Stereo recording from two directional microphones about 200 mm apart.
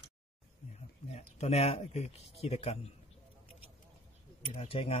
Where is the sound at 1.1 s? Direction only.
30° left (ahead or behind).